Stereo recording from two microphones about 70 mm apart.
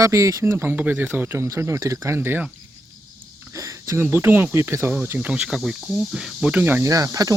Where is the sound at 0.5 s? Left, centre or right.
Right.